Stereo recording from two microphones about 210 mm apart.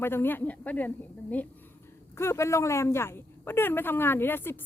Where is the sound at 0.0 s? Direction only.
10° left (ahead or behind).